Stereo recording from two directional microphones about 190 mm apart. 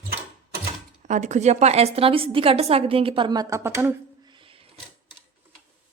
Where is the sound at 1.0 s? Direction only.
40° right (ahead or behind); by 3.9 s 10° right (ahead or behind).